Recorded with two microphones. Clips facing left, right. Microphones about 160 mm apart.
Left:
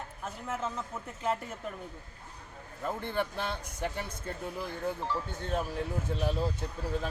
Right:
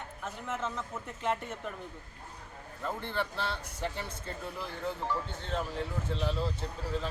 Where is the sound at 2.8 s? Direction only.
15° left (ahead or behind).